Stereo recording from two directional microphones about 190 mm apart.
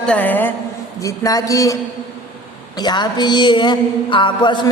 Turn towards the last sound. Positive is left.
turn(degrees=25)  # may be behind; listen again after turning